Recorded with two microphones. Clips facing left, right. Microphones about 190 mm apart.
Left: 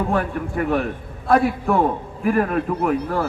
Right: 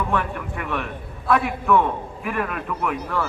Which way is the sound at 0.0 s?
40° left (ahead or behind).